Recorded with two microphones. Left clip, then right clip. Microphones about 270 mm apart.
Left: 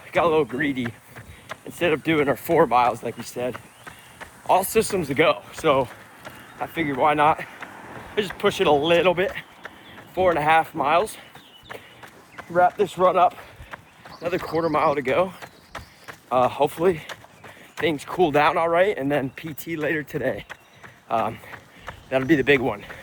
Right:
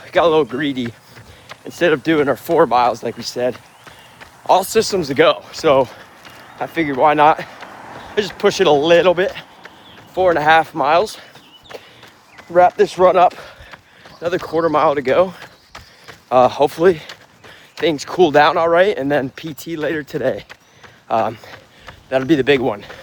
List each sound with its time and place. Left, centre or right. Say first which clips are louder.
0.1 s speech: right 6 dB; right
4.4 s speech: right 6 dB; centre
12.5 s speech: right 7 dB; right
14.2 s speech: right 6 dB; centre